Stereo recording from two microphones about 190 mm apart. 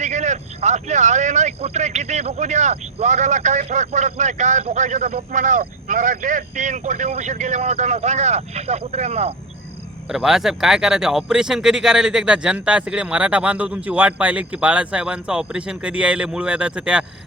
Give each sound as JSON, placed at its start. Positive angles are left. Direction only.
{"t": 0.0, "sound": "speech", "side_deg": -40}
{"t": 10.1, "sound": "speech", "side_deg": 0}